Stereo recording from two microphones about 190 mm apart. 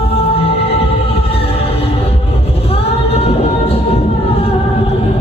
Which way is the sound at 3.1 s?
30° left (ahead or behind).